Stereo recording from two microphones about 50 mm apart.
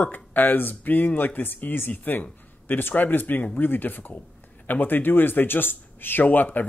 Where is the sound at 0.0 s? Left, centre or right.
Left.